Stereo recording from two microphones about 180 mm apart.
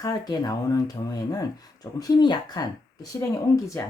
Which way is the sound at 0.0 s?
20° left (ahead or behind).